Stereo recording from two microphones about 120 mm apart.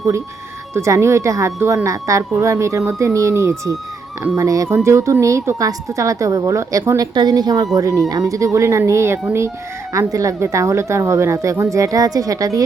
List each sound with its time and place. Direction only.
0.7 s a woman's voice: 25° right (ahead or behind)